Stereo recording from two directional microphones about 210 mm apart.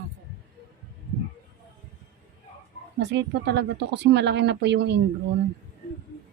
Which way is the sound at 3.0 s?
55° right (ahead or behind).